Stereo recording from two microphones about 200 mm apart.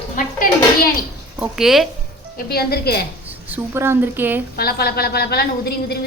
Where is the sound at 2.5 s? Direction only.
50° left (ahead or behind).